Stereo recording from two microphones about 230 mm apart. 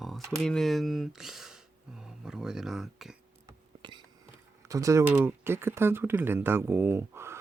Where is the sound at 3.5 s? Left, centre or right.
Centre.